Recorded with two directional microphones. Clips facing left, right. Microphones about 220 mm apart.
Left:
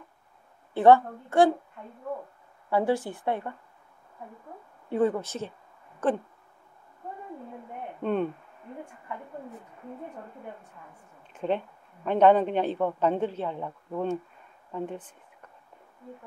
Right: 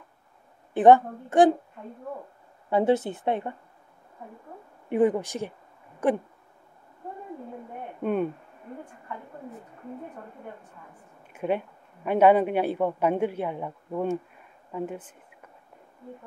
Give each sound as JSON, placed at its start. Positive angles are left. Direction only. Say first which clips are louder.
{"t": 0.7, "sound": "speech", "louder": "right 2 dB", "side_deg": -20}
{"t": 2.7, "sound": "speech", "louder": "right 3 dB", "side_deg": -20}
{"t": 4.8, "sound": "speech", "louder": "right 3 dB", "side_deg": -15}
{"t": 8.0, "sound": "speech", "louder": "right 1 dB", "side_deg": -10}
{"t": 11.3, "sound": "speech", "louder": "right 1 dB", "side_deg": -10}